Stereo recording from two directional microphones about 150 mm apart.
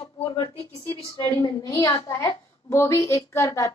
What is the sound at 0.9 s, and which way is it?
A woman's voice, 15° left (ahead or behind).